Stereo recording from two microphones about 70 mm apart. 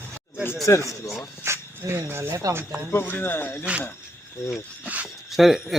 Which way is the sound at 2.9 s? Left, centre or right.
Left.